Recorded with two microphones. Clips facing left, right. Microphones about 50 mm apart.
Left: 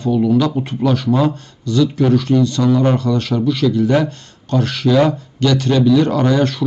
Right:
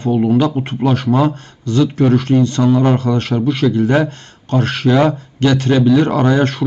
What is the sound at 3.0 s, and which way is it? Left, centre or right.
Speech, right.